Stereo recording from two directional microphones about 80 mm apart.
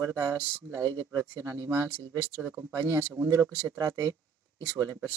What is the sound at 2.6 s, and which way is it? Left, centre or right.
Speech, right.